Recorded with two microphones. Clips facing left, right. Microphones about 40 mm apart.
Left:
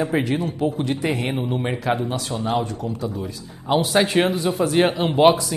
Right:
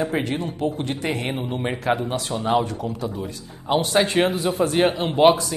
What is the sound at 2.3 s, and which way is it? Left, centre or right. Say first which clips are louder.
Speech: right 3 dB; centre.